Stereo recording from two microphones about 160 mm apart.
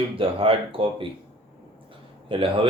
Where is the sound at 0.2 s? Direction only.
35° right (ahead or behind).